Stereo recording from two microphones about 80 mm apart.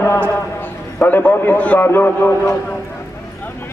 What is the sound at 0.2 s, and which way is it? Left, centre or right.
A man's voice, left.